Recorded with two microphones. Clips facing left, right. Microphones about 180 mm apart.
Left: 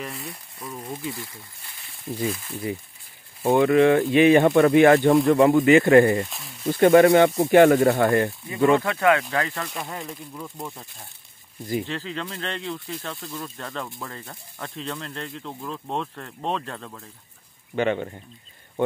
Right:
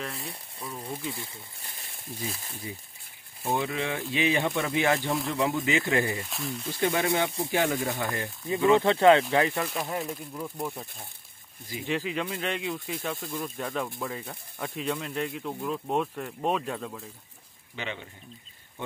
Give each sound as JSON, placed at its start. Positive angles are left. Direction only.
{"t": 0.2, "sound": "speech", "side_deg": -30}
{"t": 0.7, "sound": "speech", "side_deg": 30}
{"t": 3.4, "sound": "speech", "side_deg": 60}
{"t": 8.5, "sound": "speech", "side_deg": 50}
{"t": 8.8, "sound": "speech", "side_deg": -25}
{"t": 9.6, "sound": "speech", "side_deg": -5}
{"t": 11.8, "sound": "speech", "side_deg": -15}
{"t": 17.7, "sound": "speech", "side_deg": 55}